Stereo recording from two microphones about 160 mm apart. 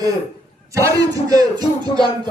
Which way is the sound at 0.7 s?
20° right (ahead or behind).